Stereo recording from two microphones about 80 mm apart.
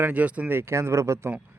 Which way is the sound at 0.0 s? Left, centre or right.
Centre.